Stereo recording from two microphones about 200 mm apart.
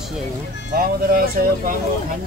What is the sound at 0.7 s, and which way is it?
Speech, 50° right (ahead or behind).